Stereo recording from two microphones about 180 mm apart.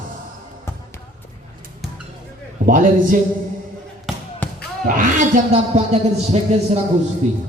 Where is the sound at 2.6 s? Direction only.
50° right (ahead or behind).